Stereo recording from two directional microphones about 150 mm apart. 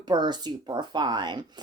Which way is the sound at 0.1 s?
30° right (ahead or behind).